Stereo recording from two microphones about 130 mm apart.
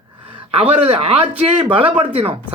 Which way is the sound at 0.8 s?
45° right (ahead or behind).